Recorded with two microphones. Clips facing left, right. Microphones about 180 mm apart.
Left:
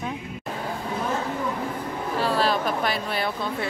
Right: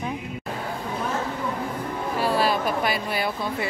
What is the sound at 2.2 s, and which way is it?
Speech, 10° right (ahead or behind).